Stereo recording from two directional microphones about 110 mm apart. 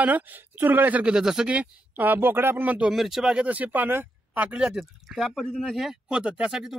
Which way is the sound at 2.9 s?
5° right (ahead or behind).